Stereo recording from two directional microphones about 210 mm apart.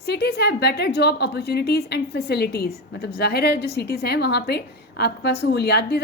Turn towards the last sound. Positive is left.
turn(degrees=50)  # may be behind; listen again after turning